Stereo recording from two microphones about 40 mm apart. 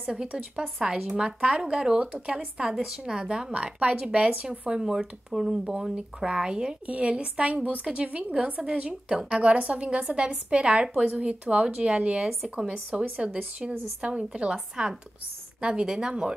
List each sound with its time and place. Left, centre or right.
0.2 s a woman's voice: right